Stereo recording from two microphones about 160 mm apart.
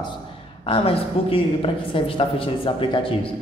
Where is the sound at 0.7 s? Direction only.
35° left (ahead or behind).